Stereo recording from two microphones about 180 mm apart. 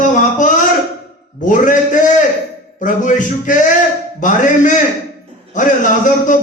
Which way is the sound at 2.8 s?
45° left (ahead or behind).